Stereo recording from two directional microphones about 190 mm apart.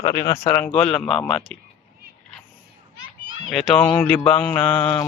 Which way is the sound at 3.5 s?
5° left (ahead or behind).